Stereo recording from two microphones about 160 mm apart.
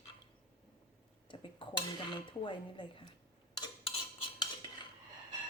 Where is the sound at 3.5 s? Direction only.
30° left (ahead or behind).